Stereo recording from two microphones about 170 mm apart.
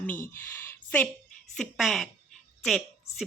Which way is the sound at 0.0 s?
10° left (ahead or behind).